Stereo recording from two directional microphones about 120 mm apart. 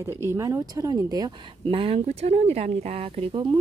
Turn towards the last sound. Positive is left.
turn(degrees=-45)  # may be behind; listen again after turning